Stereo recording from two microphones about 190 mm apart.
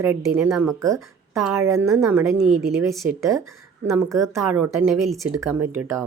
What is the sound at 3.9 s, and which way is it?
A woman's voice, 15° right (ahead or behind).